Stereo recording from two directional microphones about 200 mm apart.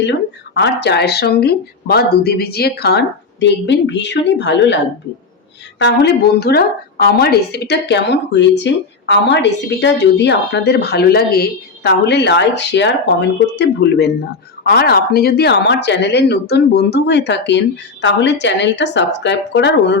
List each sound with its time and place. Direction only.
0.0 s a woman's voice: 60° left (ahead or behind)
5.8 s a woman's voice: 55° left (ahead or behind)